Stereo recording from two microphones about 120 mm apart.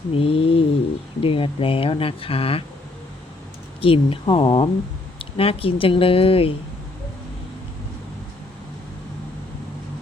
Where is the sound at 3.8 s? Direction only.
50° left (ahead or behind).